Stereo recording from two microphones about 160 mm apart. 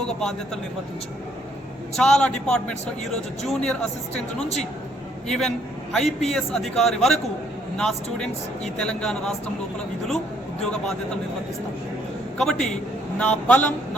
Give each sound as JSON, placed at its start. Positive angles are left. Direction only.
{"t": 0.2, "sound": "a man's voice", "side_deg": 5}
{"t": 2.0, "sound": "a man's voice", "side_deg": 5}
{"t": 5.3, "sound": "a man's voice", "side_deg": 5}
{"t": 6.1, "sound": "a man's voice", "side_deg": 40}
{"t": 6.3, "sound": "a man's voice", "side_deg": 0}
{"t": 12.4, "sound": "a man's voice", "side_deg": 5}